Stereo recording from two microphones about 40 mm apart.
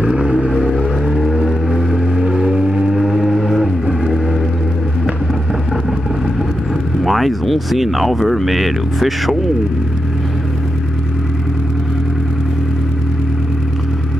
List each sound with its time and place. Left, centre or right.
0.5 s vehicle: centre
2.2 s vehicle: centre
7.0 s speech: centre